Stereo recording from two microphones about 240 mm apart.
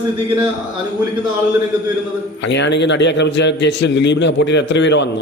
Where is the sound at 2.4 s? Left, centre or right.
Left.